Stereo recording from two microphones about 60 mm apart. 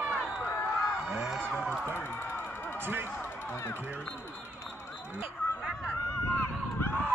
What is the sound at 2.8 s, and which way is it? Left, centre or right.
Basketball bounce, right.